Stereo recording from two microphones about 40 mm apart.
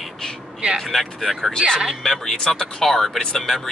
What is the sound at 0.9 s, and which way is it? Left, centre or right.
Speech, centre.